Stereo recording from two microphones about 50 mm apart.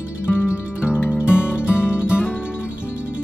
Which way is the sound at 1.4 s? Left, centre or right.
Left.